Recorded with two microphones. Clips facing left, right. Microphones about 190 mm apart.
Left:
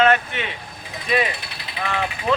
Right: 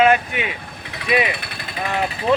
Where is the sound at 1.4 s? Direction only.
55° right (ahead or behind).